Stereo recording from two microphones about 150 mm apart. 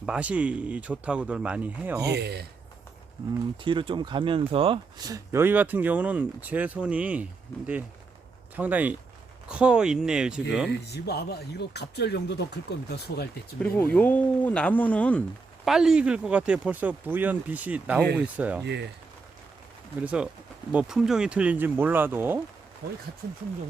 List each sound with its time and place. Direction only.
0.0 s speech: 5° right (ahead or behind)
2.1 s speech: 90° right
3.6 s speech: 35° right (ahead or behind)
5.0 s speech: 20° right (ahead or behind)
8.5 s speech: 10° right (ahead or behind)
10.8 s speech: 90° left
13.6 s speech: 10° left (ahead or behind)
15.6 s speech: 5° right (ahead or behind)
18.6 s speech: 90° right
20.0 s speech: 10° right (ahead or behind)
23.2 s speech: 90° right